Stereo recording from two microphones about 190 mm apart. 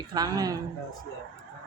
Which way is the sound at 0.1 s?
20° right (ahead or behind).